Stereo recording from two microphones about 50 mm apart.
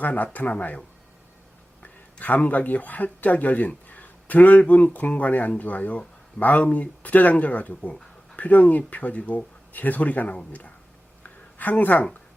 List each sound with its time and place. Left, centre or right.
0.0 s speech: left
1.8 s a sound: left
2.4 s speech: left
11.5 s speech: left